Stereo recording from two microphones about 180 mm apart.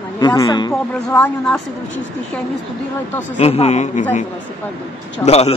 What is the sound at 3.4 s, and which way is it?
Speech, 35° left (ahead or behind).